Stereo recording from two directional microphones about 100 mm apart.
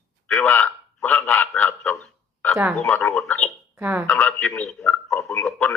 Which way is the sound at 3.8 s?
15° right (ahead or behind).